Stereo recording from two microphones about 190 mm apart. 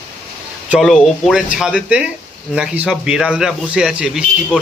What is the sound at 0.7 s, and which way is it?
Speech, centre (ahead or behind).